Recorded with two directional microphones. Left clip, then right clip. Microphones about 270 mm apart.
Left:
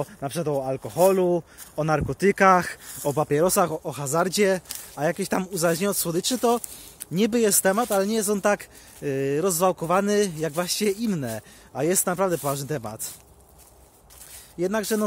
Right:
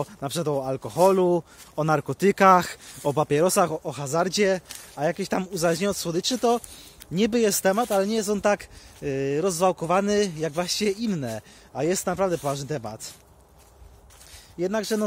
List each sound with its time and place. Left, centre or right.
0.0 s speech: centre
0.8 s speech: right; by 13.1 s centre
14.6 s speech: centre